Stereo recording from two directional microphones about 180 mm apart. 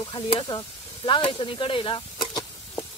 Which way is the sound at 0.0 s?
30° left (ahead or behind).